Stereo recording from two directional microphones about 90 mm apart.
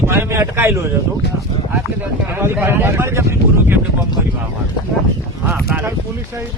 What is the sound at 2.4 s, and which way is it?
Speech, 25° right (ahead or behind).